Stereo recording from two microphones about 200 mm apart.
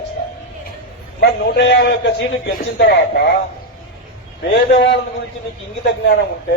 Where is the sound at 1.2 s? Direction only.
60° left (ahead or behind).